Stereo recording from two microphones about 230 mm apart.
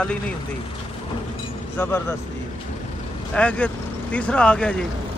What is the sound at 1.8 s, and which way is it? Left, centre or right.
Speech, centre.